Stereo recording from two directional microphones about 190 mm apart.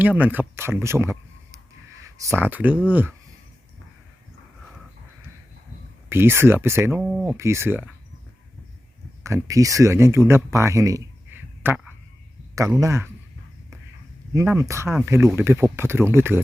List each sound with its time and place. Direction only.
0.0 s a man's voice: 10° right (ahead or behind)
6.1 s speech: 10° right (ahead or behind)
9.2 s speech: 15° right (ahead or behind)
12.8 s speech: 15° right (ahead or behind)
14.3 s speech: 15° right (ahead or behind)